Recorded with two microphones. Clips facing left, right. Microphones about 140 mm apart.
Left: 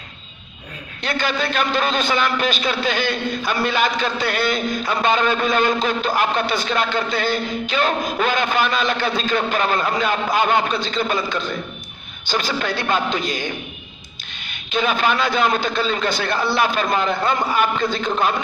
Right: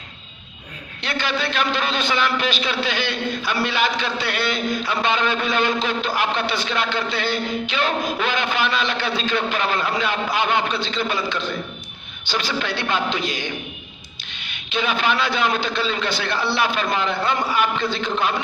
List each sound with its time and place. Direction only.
1.0 s a man's voice: 45° left (ahead or behind)